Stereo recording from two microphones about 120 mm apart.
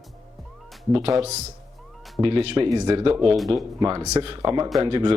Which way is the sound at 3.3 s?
Centre (ahead or behind).